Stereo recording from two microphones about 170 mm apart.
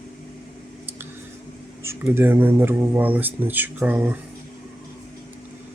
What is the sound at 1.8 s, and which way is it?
Speech, 15° right (ahead or behind).